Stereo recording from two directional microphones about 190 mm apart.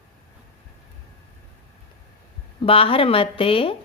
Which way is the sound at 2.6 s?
30° left (ahead or behind).